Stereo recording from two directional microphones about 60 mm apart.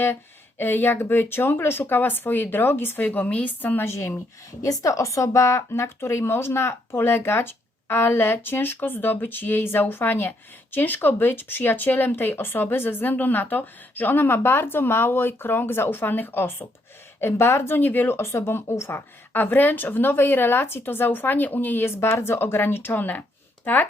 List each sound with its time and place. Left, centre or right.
0.6 s speech: left
3.0 s a woman's voice: left
3.8 s speech: left
4.6 s speech: left
18.2 s speech: left
19.3 s speech: left